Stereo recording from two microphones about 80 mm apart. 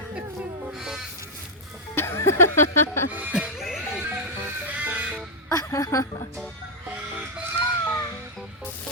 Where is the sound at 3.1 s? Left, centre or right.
Right.